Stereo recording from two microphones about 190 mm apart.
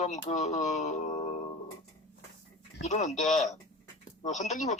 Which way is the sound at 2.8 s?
35° left (ahead or behind).